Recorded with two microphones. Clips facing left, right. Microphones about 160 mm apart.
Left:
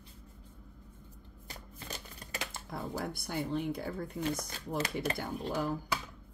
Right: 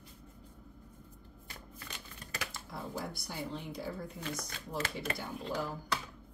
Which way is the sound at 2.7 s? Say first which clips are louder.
Left 4 dB; 55° left (ahead or behind).